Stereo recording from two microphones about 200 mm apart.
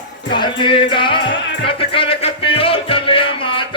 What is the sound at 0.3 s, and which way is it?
Music, 25° left (ahead or behind).